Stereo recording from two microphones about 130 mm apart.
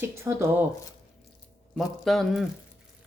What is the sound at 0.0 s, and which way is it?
Speech, 20° right (ahead or behind).